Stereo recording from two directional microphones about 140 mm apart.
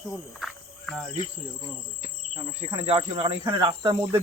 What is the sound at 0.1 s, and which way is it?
Speech, 5° left (ahead or behind).